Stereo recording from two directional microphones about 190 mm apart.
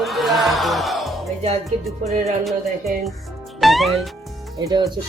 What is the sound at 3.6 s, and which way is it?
Music, centre (ahead or behind).